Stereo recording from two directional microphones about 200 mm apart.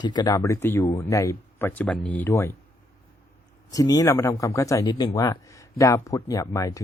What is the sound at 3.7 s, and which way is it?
Speech, 20° left (ahead or behind).